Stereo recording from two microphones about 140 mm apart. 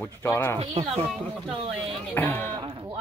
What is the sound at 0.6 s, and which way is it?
Speech, 45° right (ahead or behind).